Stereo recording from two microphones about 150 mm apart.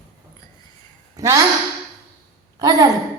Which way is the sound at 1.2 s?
20° right (ahead or behind).